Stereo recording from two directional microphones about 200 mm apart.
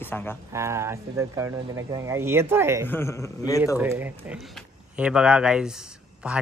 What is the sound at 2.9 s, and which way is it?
Speech, 10° left (ahead or behind).